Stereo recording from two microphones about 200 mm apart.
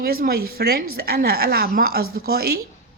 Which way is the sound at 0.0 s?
50° right (ahead or behind).